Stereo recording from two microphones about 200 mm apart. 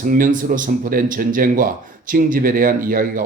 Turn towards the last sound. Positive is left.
turn(degrees=-45)  # may be behind; listen again after turning